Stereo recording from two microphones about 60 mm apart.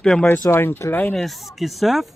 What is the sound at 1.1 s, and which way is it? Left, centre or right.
Speech, centre.